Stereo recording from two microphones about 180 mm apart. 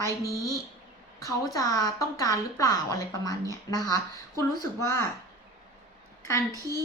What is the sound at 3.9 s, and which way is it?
A woman's voice, 15° left (ahead or behind).